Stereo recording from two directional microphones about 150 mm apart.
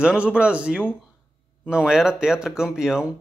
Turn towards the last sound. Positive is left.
turn(degrees=-5)  # may be behind; listen again after turning